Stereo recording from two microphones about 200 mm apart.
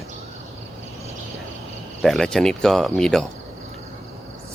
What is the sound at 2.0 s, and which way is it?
Speech, centre (ahead or behind).